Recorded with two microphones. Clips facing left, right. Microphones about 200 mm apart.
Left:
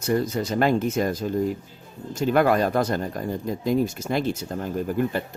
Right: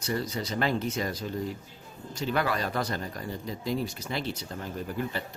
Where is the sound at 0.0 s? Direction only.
50° left (ahead or behind).